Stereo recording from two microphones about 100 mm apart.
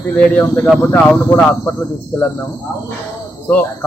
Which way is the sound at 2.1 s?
5° left (ahead or behind).